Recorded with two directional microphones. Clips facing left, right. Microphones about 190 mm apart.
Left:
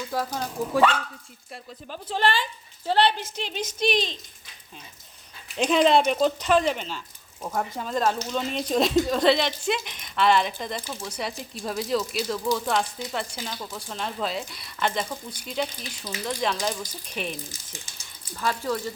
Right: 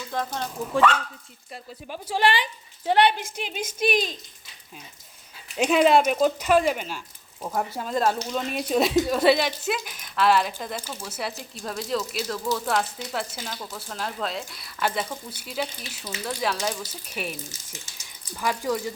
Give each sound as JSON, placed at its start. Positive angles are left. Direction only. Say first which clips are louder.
{"t": 0.3, "sound": "speech", "louder": "left 2 dB", "side_deg": 10}
{"t": 1.9, "sound": "a woman's voice", "louder": "right 2 dB", "side_deg": -10}
{"t": 5.5, "sound": "a woman's voice", "louder": "right 1 dB", "side_deg": -5}
{"t": 17.5, "sound": "speech", "louder": "left 1 dB", "side_deg": 30}
{"t": 18.3, "sound": "a woman's voice", "louder": "right 1 dB", "side_deg": -15}